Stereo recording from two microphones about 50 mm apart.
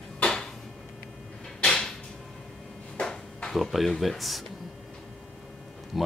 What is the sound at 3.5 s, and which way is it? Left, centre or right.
Speech, centre.